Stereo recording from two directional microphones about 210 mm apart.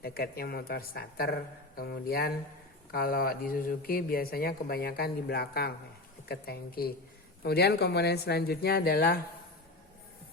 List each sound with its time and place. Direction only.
0.0 s speech: 45° left (ahead or behind)